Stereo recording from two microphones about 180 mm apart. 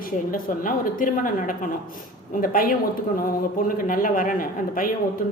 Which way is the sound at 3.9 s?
50° left (ahead or behind).